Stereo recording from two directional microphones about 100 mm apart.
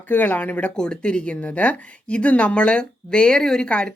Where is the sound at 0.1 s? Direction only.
20° left (ahead or behind).